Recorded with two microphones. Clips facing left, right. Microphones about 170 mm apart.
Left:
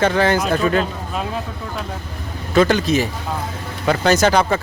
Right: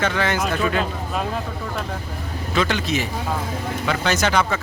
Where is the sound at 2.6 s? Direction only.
40° left (ahead or behind).